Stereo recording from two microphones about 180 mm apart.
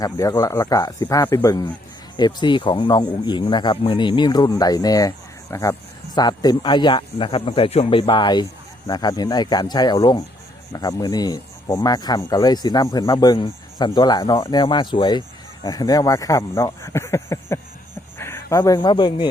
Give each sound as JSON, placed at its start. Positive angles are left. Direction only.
{"t": 0.0, "sound": "speech", "side_deg": 20}